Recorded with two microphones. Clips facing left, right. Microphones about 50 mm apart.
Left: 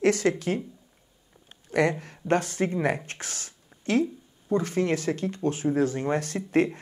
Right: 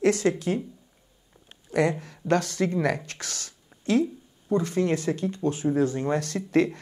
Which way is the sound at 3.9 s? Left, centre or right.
Left.